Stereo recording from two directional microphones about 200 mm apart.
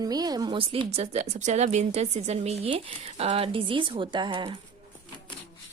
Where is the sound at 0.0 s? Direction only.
20° right (ahead or behind).